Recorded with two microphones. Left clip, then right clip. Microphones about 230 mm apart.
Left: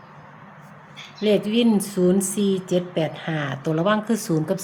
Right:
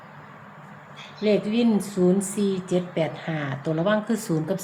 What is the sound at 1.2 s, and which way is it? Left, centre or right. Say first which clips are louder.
Speech: left 2 dB; left.